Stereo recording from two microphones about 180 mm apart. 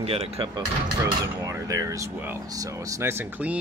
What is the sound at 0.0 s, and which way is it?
Dishes, 35° right (ahead or behind).